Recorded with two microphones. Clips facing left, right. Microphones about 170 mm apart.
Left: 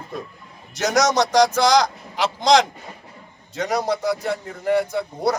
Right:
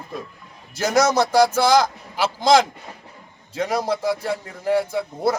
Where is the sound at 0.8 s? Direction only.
5° right (ahead or behind).